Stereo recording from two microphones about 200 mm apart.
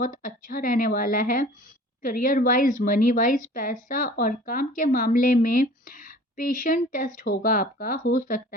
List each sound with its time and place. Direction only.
0.0 s a woman's voice: 45° left (ahead or behind)